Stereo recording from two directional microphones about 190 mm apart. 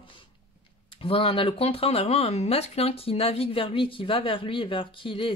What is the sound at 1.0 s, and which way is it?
Speech, 30° left (ahead or behind).